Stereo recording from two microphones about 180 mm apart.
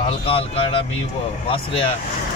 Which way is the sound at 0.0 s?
30° left (ahead or behind).